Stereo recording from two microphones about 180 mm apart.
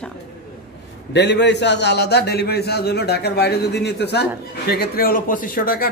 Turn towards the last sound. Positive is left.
turn(degrees=55)  # may be behind; listen again after turning